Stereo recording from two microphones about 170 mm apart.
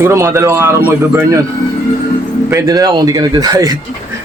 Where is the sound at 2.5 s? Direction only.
20° right (ahead or behind).